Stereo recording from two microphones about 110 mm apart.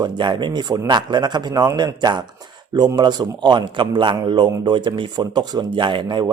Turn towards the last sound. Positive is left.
turn(degrees=-45)  # may be behind; listen again after turning